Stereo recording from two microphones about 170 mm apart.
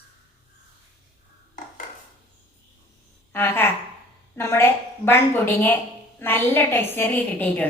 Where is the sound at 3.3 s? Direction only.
15° left (ahead or behind).